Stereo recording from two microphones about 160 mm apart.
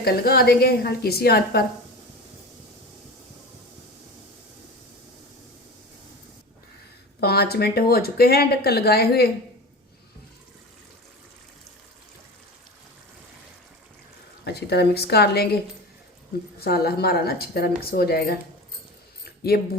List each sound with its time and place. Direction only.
0.0 s a woman's voice: 80° left
7.2 s speech: 80° left
14.4 s a woman's voice: 90° left
16.6 s a woman's voice: 75° left (ahead or behind)
19.2 s a sound: 80° left